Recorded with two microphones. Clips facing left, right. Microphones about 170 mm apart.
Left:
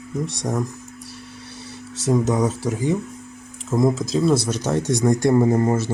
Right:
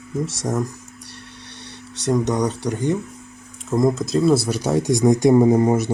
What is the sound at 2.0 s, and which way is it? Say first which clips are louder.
Speech: even; centre (ahead or behind).